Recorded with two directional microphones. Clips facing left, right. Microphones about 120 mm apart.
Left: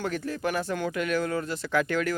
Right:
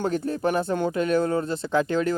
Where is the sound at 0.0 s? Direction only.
30° right (ahead or behind).